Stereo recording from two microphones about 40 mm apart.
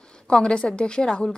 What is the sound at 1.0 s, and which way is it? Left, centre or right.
Speech, centre.